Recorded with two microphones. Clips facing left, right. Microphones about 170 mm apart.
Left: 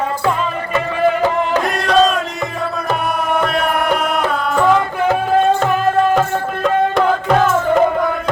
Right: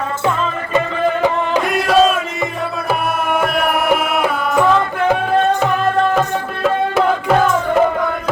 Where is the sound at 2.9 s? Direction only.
5° right (ahead or behind).